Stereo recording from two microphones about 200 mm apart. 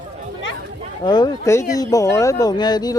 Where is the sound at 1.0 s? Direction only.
20° left (ahead or behind).